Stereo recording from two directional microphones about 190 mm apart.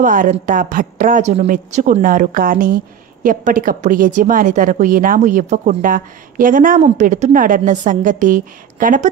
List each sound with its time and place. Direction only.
0.0 s a woman's voice: 45° right (ahead or behind)